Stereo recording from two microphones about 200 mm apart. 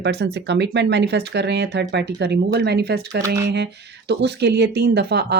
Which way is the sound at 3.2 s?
15° right (ahead or behind).